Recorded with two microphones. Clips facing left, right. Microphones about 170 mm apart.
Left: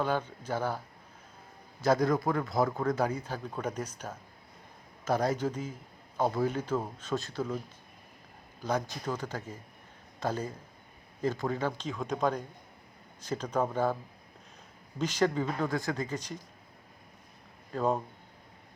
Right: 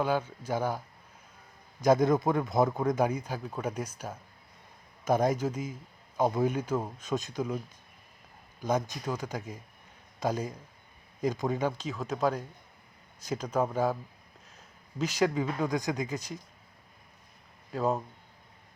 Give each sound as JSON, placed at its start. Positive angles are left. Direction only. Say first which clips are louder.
{"t": 0.0, "sound": "a man's voice", "louder": "right 2 dB", "side_deg": -10}
{"t": 1.8, "sound": "a man's voice", "louder": "right 3 dB", "side_deg": -20}
{"t": 8.6, "sound": "a man's voice", "louder": "right 2 dB", "side_deg": -15}
{"t": 11.9, "sound": "a man's voice", "louder": "right 1 dB", "side_deg": -5}
{"t": 14.9, "sound": "a man's voice", "louder": "right 1 dB", "side_deg": -10}
{"t": 17.7, "sound": "speech", "louder": "even", "side_deg": -5}